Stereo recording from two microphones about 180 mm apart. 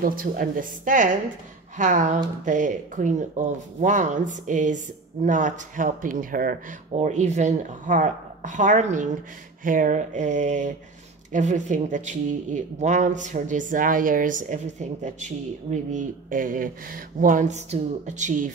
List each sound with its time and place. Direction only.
0.0 s speech: 50° right (ahead or behind)